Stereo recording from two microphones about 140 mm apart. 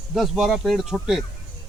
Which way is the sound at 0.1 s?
Centre (ahead or behind).